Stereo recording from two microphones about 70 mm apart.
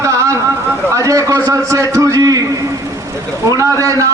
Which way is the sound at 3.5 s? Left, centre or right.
Right.